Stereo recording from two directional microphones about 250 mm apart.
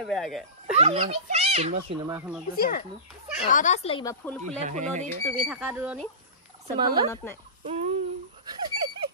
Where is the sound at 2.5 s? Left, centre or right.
Left.